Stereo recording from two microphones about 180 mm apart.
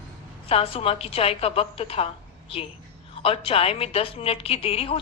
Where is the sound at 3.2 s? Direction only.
30° left (ahead or behind).